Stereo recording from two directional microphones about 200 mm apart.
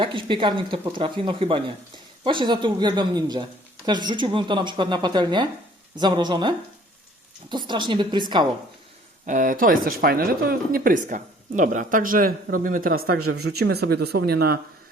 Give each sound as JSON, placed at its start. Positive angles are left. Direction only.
{"t": 0.0, "sound": "speech", "side_deg": -25}
{"t": 7.5, "sound": "speech", "side_deg": -25}
{"t": 9.2, "sound": "speech", "side_deg": -40}